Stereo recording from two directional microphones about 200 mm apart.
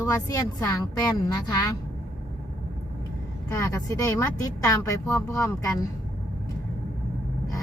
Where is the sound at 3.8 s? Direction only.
15° left (ahead or behind).